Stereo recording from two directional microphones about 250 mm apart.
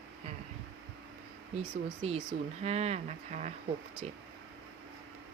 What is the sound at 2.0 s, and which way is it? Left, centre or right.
Speech, right.